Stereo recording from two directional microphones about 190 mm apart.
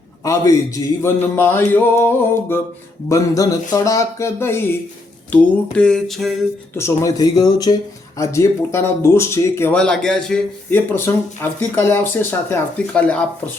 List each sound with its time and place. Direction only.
1.0 s speech: 10° left (ahead or behind)
5.3 s a sound: 5° left (ahead or behind)
6.7 s speech: 15° left (ahead or behind)